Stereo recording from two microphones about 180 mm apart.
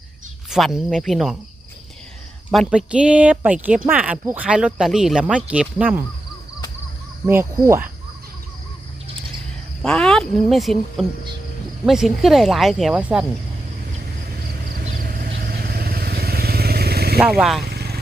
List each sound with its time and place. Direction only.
0.5 s speech: centre (ahead or behind)
2.5 s speech: centre (ahead or behind)
7.3 s speech: 15° right (ahead or behind)
9.8 s speech: 5° left (ahead or behind)
14.4 s a sound: 55° right (ahead or behind)
14.9 s vehicle: 55° right (ahead or behind)
17.2 s speech: 5° right (ahead or behind)
17.7 s vehicle: 60° right (ahead or behind)